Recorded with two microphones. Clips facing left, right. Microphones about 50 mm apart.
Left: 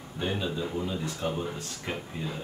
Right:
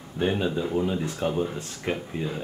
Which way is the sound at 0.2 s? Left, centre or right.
Right.